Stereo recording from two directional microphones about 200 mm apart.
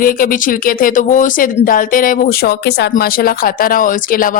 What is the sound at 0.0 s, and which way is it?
Speech, 45° left (ahead or behind).